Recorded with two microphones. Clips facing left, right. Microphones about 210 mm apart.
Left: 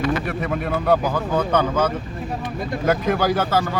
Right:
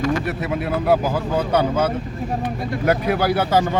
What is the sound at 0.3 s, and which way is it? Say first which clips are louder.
Speech: right 1 dB; 5° right (ahead or behind).